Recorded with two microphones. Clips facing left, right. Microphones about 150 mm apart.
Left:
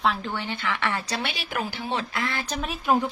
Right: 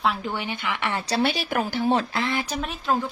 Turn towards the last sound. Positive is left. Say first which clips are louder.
# left 2 dB
turn(degrees=15)  # may be behind; listen again after turning